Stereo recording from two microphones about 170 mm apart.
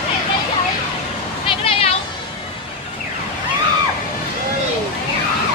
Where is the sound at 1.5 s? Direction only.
35° left (ahead or behind).